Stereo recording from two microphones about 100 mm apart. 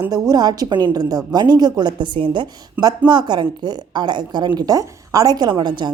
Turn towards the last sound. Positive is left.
turn(degrees=-50)  # may be behind; listen again after turning